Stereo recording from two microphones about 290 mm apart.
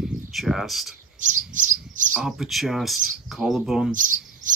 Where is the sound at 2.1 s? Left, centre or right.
Centre.